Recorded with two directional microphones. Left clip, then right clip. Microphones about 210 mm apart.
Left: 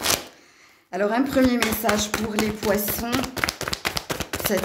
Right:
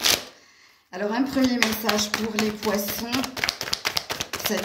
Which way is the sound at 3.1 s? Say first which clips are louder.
Left 1 dB; 20° left (ahead or behind).